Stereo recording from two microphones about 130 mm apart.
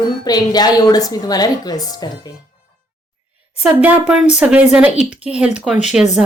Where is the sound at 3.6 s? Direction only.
15° right (ahead or behind).